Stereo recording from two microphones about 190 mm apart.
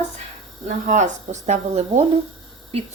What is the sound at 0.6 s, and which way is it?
Speech, 40° right (ahead or behind).